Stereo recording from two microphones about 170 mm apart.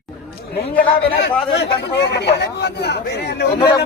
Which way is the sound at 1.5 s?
90° left.